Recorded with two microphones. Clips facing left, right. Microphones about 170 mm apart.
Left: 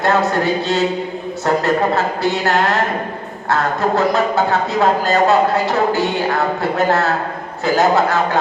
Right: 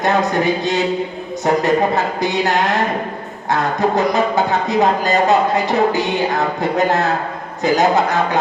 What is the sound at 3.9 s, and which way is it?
Speech, 15° right (ahead or behind).